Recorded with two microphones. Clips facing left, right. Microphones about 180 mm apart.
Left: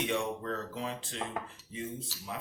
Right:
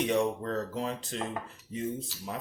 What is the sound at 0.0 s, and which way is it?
Speech, 35° right (ahead or behind).